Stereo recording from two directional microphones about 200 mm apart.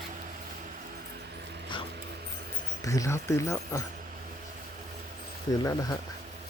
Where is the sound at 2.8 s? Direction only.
15° left (ahead or behind).